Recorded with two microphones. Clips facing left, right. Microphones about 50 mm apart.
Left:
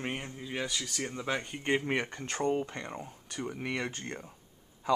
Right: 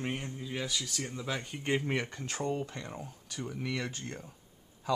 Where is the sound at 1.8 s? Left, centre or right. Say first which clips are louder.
Left 1 dB; left.